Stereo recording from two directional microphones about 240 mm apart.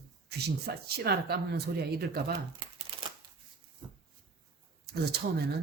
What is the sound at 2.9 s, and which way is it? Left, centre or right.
Shuffling cards, right.